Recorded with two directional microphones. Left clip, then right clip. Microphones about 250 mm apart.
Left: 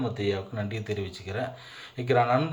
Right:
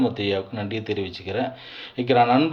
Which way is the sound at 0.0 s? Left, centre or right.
Centre.